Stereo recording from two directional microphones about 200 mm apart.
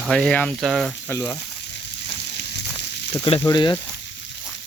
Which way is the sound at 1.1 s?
15° left (ahead or behind).